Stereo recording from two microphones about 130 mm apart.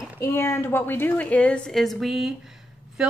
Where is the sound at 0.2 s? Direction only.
20° left (ahead or behind).